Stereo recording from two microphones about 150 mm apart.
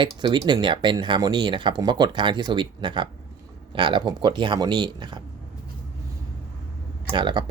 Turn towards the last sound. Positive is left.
turn(degrees=-30)  # may be behind; listen again after turning